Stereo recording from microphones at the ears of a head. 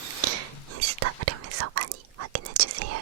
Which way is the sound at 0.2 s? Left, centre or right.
Right.